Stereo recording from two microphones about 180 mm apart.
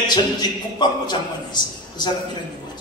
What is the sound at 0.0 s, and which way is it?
A man's voice, 25° left (ahead or behind).